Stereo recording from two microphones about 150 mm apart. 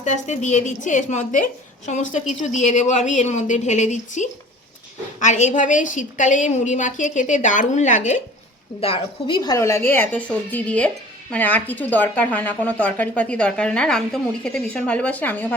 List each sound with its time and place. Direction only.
0.0 s a woman's voice: 50° left (ahead or behind)
8.8 s a woman's voice: 35° left (ahead or behind)
9.6 s speech: 20° left (ahead or behind)